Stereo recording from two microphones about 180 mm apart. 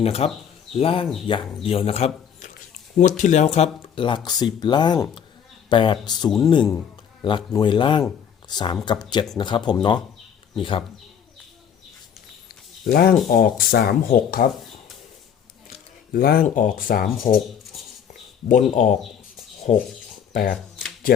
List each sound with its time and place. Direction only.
0.0 s speech: 35° left (ahead or behind)
12.9 s speech: 55° left (ahead or behind)
16.1 s speech: 55° left (ahead or behind)
18.7 s speech: 45° left (ahead or behind)
20.3 s speech: 50° left (ahead or behind)